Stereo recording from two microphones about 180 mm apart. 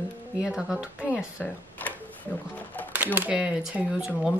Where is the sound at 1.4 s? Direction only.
10° left (ahead or behind).